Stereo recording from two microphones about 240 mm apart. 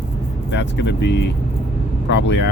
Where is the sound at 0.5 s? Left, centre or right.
Left.